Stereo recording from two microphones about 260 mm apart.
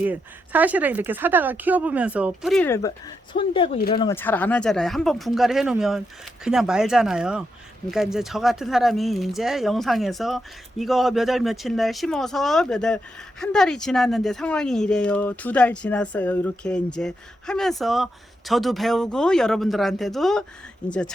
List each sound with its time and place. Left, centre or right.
0.0 s speech: centre